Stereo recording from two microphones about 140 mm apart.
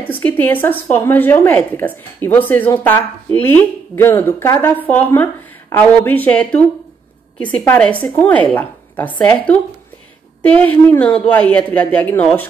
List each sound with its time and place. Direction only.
0.1 s a woman's voice: 10° left (ahead or behind)
10.4 s a woman's voice: 10° left (ahead or behind)